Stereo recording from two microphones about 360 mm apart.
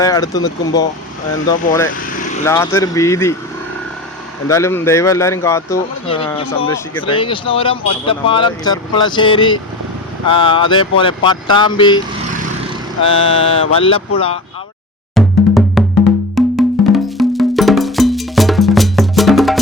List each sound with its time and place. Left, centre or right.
0.0 s speech: centre
4.4 s speech: centre
13.1 s speech: centre
15.1 s music: centre
16.3 s wood block: centre